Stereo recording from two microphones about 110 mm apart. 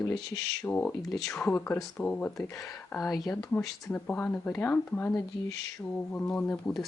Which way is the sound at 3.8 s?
10° left (ahead or behind).